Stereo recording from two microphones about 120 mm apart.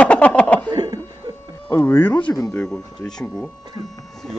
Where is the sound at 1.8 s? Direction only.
15° left (ahead or behind).